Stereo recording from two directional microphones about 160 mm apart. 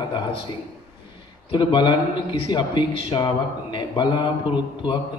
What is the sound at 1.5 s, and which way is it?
Speech, 30° left (ahead or behind).